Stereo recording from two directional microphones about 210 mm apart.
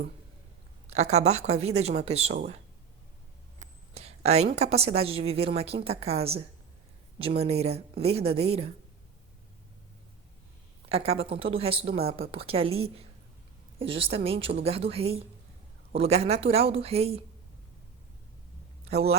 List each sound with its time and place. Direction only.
0.9 s speech: 30° right (ahead or behind)
3.6 s a sound: 30° right (ahead or behind)
4.5 s a woman's voice: 30° right (ahead or behind)
10.8 s a woman's voice: 25° right (ahead or behind)
18.9 s speech: 30° right (ahead or behind)